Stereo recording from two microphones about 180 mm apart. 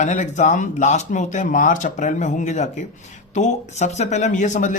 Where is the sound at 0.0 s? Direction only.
40° left (ahead or behind).